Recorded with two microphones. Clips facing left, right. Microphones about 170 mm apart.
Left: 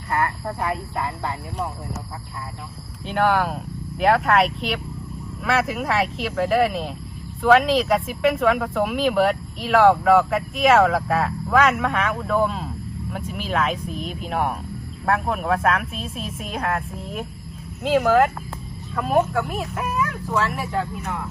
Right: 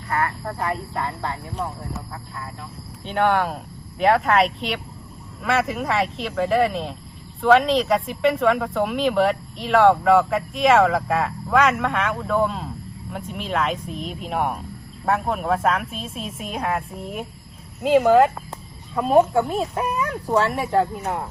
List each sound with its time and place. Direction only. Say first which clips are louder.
0.1 s speech: left 1 dB; 20° left (ahead or behind)
0.6 s speech: even; centre (ahead or behind)
3.0 s speech: even; centre (ahead or behind)
18.0 s speech: right 2 dB; 20° right (ahead or behind); by 21.2 s 35° right (ahead or behind)